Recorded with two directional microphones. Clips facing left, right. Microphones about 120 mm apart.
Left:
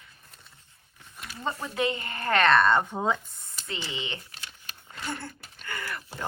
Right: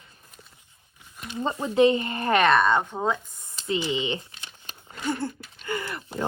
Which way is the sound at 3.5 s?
20° right (ahead or behind).